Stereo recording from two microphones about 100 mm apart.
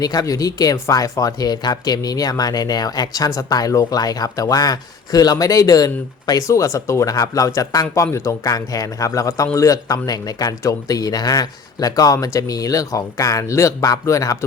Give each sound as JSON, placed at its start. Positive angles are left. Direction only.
{"t": 0.0, "sound": "speech", "side_deg": 40}